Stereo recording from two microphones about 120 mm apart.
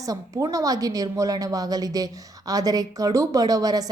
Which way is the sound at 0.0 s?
30° right (ahead or behind).